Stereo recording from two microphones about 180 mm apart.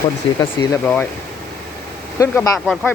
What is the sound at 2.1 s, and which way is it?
Speech, 15° left (ahead or behind).